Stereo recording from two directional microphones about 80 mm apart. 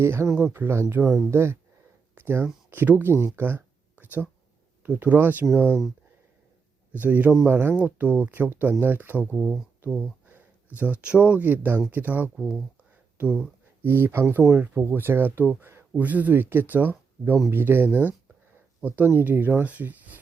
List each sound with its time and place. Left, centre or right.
0.0 s speech: right
2.1 s a sound: right
2.6 s speech: right
6.9 s speech: right